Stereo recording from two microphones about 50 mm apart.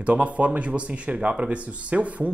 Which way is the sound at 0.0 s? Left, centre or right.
Right.